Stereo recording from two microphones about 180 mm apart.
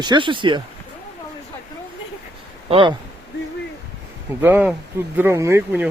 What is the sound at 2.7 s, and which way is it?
Speech, 30° right (ahead or behind).